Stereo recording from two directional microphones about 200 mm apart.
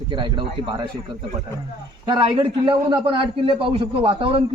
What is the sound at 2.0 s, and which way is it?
A man's voice, 25° right (ahead or behind).